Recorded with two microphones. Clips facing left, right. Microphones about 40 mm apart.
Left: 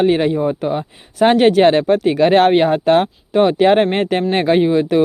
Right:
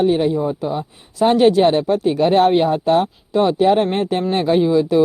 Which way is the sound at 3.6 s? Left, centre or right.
Left.